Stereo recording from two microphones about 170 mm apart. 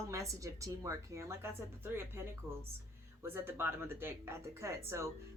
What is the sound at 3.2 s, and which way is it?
A woman's voice, 15° right (ahead or behind).